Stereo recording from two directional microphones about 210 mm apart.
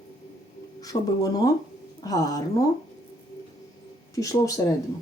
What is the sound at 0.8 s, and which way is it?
Speech, 15° left (ahead or behind).